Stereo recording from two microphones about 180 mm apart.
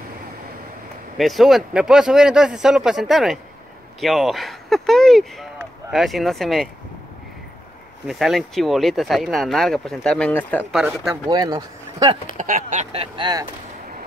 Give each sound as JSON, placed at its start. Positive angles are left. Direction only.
{"t": 1.1, "sound": "speech", "side_deg": 0}
{"t": 8.1, "sound": "speech", "side_deg": 0}
{"t": 10.7, "sound": "speech", "side_deg": -5}
{"t": 11.2, "sound": "speech", "side_deg": -20}
{"t": 12.4, "sound": "speech", "side_deg": -45}